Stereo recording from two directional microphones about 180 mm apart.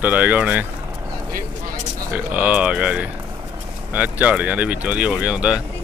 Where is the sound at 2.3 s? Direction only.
5° right (ahead or behind).